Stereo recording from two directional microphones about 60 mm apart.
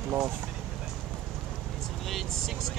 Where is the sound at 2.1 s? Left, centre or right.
Centre.